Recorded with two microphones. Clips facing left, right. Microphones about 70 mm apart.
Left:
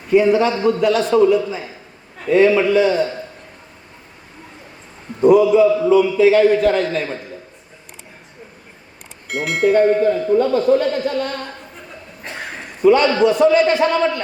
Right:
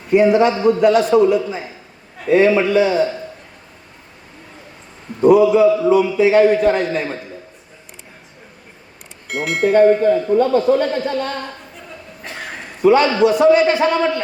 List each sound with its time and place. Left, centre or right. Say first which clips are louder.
0.1 s a man's voice: right 1 dB; centre
5.4 s a man's voice: right 1 dB; centre
9.3 s speech: even; centre
10.4 s speech: right 1 dB; right
12.8 s a man's voice: even; centre